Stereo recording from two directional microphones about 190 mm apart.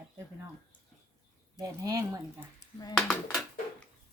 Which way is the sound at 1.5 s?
20° right (ahead or behind).